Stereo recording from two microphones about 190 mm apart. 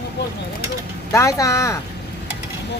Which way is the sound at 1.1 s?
15° left (ahead or behind).